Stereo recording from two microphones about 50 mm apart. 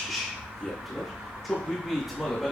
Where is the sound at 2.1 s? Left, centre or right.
Centre.